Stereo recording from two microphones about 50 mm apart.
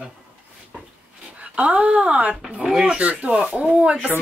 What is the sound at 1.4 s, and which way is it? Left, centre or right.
Speech, right.